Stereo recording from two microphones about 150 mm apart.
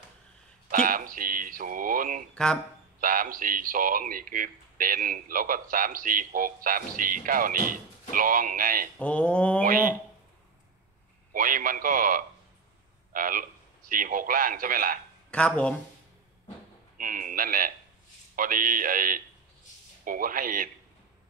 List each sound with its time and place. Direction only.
0.7 s a sound: 65° right (ahead or behind)
2.3 s speech: 5° left (ahead or behind)
3.0 s speech: 65° right (ahead or behind)
8.9 s mantra: 10° left (ahead or behind)
11.3 s a man's voice: 65° right (ahead or behind)
15.3 s mantra: 10° left (ahead or behind)
16.9 s speech: 65° right (ahead or behind)